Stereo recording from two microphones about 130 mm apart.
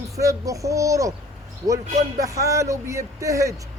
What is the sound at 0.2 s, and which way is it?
Speech, 25° right (ahead or behind).